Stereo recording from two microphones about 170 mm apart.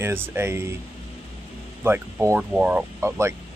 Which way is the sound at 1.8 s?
15° right (ahead or behind).